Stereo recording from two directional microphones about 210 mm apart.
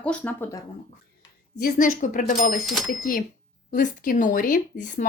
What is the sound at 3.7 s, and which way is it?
Speech, 40° left (ahead or behind).